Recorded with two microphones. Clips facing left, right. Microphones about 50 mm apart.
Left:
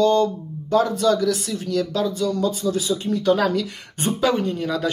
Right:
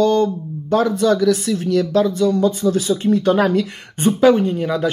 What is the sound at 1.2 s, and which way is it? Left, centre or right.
Speech, right.